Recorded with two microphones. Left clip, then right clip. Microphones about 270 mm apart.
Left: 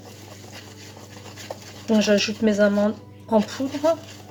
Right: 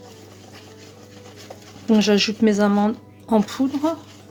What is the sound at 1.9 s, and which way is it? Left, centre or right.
Speech, right.